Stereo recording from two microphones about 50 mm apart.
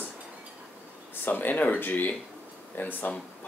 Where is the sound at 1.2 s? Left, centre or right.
Left.